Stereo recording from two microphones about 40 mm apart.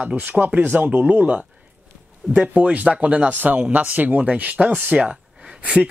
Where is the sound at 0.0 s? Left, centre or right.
Right.